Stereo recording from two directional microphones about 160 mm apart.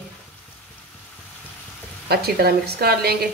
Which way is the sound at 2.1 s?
75° right (ahead or behind).